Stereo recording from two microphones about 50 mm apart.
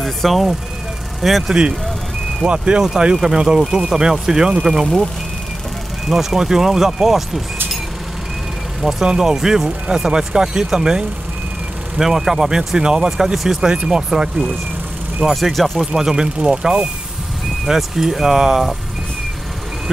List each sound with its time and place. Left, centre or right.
0.0 s speech: centre
1.5 s speech: centre
3.2 s speech: centre
6.0 s speech: centre
8.8 s speech: centre
15.2 s speech: centre
15.8 s speech: centre